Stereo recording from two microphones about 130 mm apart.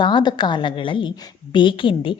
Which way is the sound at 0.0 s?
35° left (ahead or behind).